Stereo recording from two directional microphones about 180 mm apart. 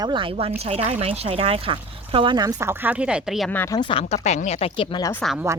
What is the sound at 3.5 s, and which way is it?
Speech, 15° left (ahead or behind).